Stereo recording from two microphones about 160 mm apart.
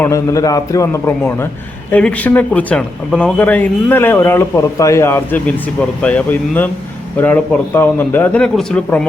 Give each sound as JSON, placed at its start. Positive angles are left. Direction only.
{"t": 0.0, "sound": "a man's voice", "side_deg": 20}